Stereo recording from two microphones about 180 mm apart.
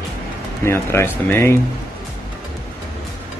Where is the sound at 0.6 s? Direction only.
15° left (ahead or behind).